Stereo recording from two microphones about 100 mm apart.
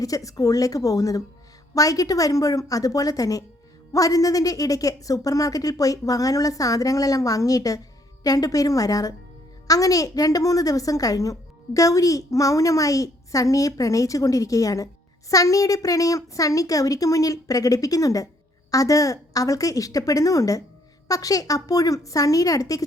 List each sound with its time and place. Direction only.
0.0 s a woman's voice: 35° left (ahead or behind)